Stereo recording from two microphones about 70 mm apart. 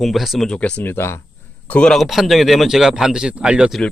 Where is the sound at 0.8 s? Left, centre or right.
Left.